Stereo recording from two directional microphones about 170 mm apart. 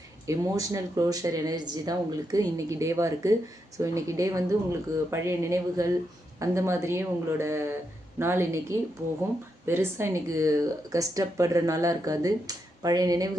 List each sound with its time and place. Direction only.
0.3 s speech: 20° right (ahead or behind)